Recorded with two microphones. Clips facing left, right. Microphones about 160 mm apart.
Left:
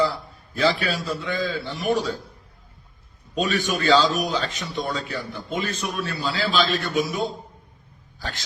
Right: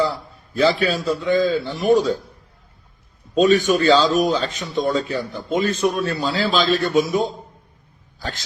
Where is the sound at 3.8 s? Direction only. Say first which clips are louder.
Right 4 dB; 45° right (ahead or behind).